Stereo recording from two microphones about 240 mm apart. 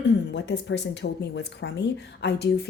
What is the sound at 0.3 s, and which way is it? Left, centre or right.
Speech, left.